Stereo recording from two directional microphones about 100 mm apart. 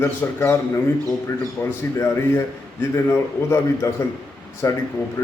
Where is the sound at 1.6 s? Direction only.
30° left (ahead or behind).